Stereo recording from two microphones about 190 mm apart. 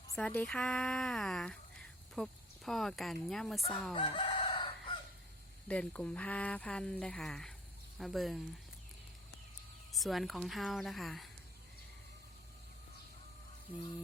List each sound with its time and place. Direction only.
0.2 s speech: 5° left (ahead or behind)
3.9 s chicken: 25° left (ahead or behind)
5.6 s speech: 5° left (ahead or behind)
10.0 s speech: centre (ahead or behind)